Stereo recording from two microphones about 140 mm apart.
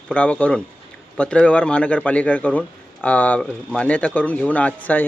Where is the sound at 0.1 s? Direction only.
10° left (ahead or behind).